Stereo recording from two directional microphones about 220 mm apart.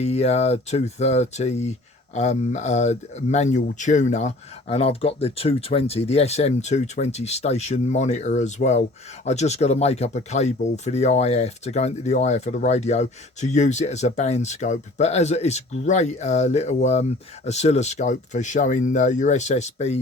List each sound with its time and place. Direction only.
0.0 s speech: 30° left (ahead or behind)